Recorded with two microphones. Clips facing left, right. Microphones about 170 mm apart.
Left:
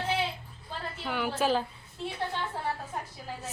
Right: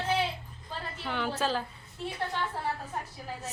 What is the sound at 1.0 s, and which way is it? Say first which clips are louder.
Speech: left 3 dB; 10° left (ahead or behind).